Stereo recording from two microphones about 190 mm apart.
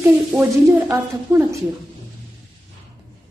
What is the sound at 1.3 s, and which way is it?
Speech, 15° right (ahead or behind).